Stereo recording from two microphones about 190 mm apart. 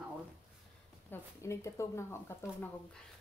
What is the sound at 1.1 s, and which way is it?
Speech, 15° left (ahead or behind).